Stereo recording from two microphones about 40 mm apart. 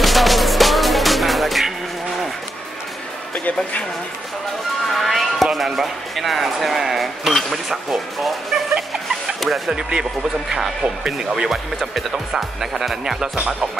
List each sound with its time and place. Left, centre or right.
0.0 s music: centre
3.3 s speech: left
4.9 s music: centre
9.7 s speech: centre
11.1 s speech: centre